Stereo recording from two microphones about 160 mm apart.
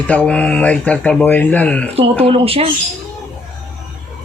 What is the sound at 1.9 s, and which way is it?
Speech, 35° right (ahead or behind).